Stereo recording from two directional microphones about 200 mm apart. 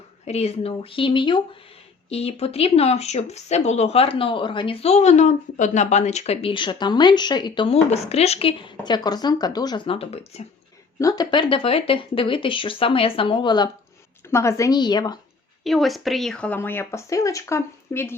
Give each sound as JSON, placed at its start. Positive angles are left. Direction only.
{"t": 0.3, "sound": "speech", "side_deg": 30}
{"t": 11.0, "sound": "speech", "side_deg": 20}
{"t": 15.6, "sound": "a woman's voice", "side_deg": 0}